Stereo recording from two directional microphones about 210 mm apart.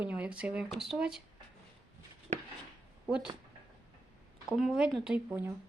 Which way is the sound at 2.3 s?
30° right (ahead or behind).